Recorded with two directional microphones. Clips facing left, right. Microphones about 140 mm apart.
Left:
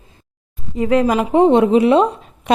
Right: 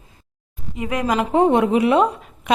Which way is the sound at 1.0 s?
15° left (ahead or behind).